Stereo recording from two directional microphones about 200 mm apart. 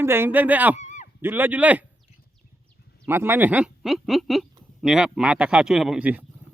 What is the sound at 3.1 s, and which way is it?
Speech, 10° right (ahead or behind).